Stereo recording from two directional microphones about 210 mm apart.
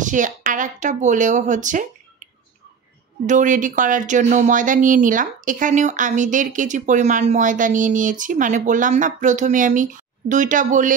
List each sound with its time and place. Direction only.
0.0 s speech: 35° right (ahead or behind)
3.3 s speech: 35° right (ahead or behind)